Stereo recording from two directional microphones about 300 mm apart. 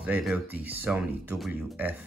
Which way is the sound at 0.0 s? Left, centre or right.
Centre.